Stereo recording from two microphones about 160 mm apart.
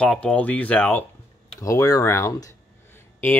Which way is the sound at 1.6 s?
20° left (ahead or behind).